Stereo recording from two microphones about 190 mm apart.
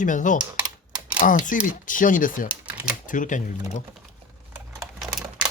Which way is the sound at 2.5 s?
5° right (ahead or behind).